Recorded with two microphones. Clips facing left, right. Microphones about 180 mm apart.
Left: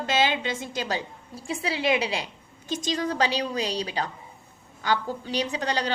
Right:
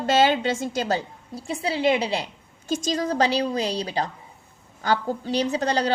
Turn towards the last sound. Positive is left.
turn(degrees=-40)  # may be behind; listen again after turning